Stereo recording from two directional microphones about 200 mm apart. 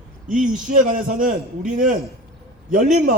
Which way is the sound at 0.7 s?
40° right (ahead or behind).